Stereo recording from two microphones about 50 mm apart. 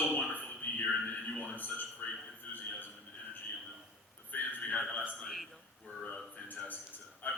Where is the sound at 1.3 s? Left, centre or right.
Left.